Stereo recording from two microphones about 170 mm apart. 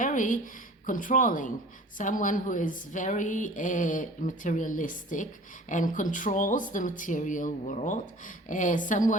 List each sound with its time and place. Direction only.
0.0 s a woman's voice: 50° left (ahead or behind)